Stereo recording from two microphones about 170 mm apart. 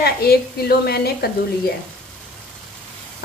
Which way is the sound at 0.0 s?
65° left (ahead or behind).